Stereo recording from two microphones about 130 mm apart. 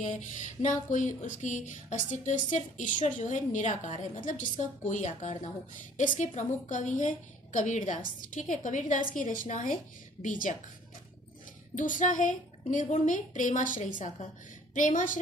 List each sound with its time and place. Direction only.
0.0 s a sound: 70° left (ahead or behind)
9.1 s a woman's voice: 80° left
11.8 s a woman's voice: 80° left